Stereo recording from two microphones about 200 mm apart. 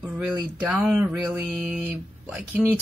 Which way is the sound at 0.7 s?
5° right (ahead or behind).